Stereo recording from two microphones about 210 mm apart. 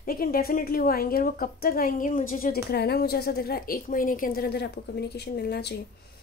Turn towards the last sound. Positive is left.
turn(degrees=50)  # may be behind; listen again after turning